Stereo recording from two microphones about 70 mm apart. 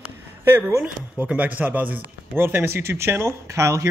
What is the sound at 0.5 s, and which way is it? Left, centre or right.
Speech, right.